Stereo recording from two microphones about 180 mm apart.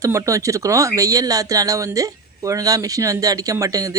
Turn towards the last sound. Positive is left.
turn(degrees=-20)  # may be behind; listen again after turning